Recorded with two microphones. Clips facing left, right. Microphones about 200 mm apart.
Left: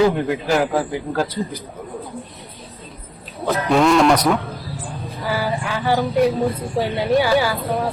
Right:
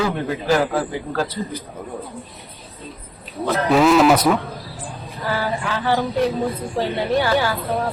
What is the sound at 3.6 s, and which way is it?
Speech, centre (ahead or behind).